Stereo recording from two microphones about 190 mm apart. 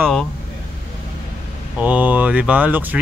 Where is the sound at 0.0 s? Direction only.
Centre (ahead or behind).